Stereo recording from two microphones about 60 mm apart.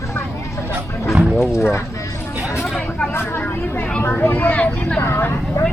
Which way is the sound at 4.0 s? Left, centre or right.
Left.